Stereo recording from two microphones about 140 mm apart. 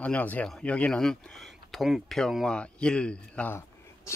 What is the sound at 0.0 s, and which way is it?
Speech, 10° left (ahead or behind).